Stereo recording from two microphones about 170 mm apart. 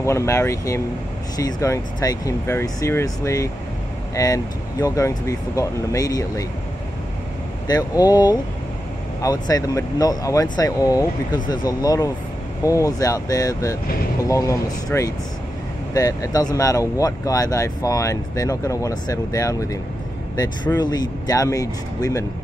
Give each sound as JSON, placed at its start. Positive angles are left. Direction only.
{"t": 0.0, "sound": "speech", "side_deg": 15}
{"t": 7.6, "sound": "speech", "side_deg": 20}